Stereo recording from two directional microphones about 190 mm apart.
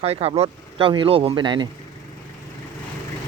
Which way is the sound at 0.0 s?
30° right (ahead or behind).